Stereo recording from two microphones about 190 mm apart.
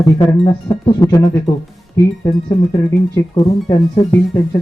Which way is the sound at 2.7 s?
15° left (ahead or behind).